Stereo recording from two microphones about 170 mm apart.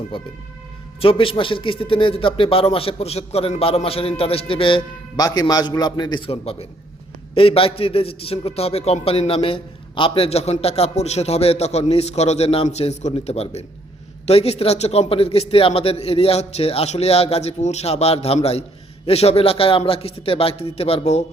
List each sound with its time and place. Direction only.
0.1 s a man's voice: 30° left (ahead or behind)